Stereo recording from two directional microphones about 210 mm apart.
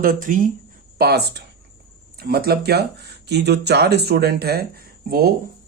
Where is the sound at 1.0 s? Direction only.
50° right (ahead or behind).